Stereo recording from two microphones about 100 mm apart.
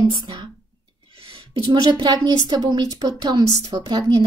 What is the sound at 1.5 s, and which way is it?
A woman's voice, 50° right (ahead or behind).